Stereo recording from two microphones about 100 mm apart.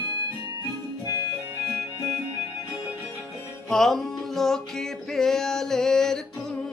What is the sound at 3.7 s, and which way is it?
Music, centre (ahead or behind).